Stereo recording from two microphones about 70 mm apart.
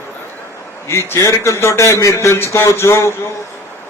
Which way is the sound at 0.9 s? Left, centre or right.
Left.